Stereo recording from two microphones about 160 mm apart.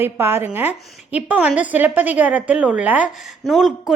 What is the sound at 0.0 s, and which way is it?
A woman's voice, 15° right (ahead or behind).